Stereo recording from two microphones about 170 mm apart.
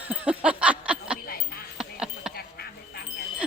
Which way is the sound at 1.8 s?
5° right (ahead or behind).